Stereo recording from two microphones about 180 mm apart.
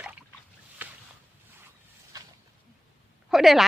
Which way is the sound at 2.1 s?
20° right (ahead or behind).